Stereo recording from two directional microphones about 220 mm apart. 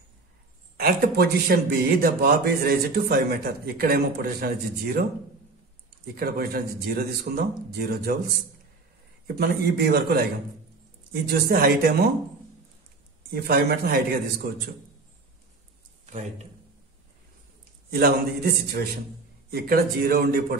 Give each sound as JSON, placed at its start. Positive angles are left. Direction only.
{"t": 0.7, "sound": "speech", "side_deg": -45}
{"t": 6.1, "sound": "speech", "side_deg": -45}
{"t": 9.4, "sound": "speech", "side_deg": -45}
{"t": 11.2, "sound": "speech", "side_deg": -45}
{"t": 13.3, "sound": "speech", "side_deg": -45}
{"t": 17.9, "sound": "speech", "side_deg": -45}